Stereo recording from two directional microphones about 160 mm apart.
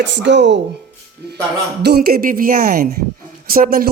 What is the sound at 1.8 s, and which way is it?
A woman's voice, 75° right (ahead or behind).